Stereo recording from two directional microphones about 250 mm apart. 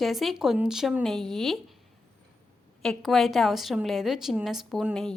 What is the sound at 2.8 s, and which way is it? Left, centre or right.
A woman's voice, centre.